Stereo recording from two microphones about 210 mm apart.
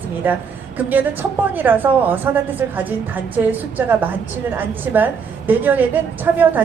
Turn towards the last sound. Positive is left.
turn(degrees=-10)  # may be behind; listen again after turning